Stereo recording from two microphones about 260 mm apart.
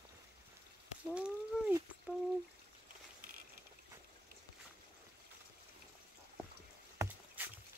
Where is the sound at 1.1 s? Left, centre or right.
Centre.